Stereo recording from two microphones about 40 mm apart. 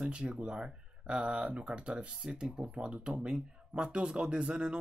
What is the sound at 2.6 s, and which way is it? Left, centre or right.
Speech, right.